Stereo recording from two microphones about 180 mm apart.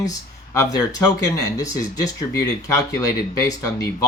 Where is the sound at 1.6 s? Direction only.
20° left (ahead or behind).